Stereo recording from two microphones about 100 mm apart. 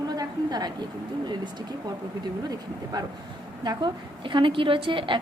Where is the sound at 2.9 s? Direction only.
40° right (ahead or behind); by 5.1 s 60° right (ahead or behind).